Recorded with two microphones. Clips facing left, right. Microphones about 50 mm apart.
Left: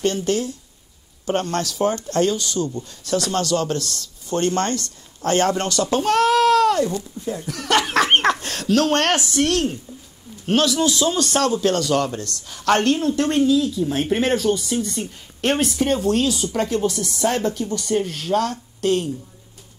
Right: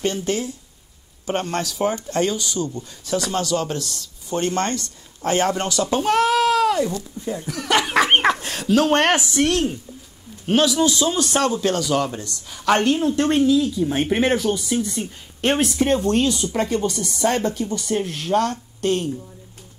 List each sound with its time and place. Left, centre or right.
0.0 s speech: right
10.5 s speech: centre